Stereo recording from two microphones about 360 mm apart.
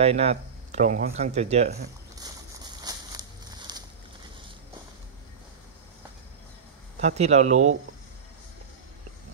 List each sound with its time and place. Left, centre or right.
0.0 s speech: centre
2.1 s a sound: centre
7.0 s speech: centre